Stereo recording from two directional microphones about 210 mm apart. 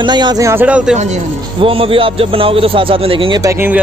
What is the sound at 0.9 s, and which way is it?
Speech, 35° right (ahead or behind).